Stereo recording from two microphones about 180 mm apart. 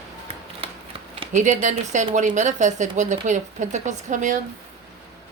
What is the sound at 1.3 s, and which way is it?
Speech, 45° right (ahead or behind).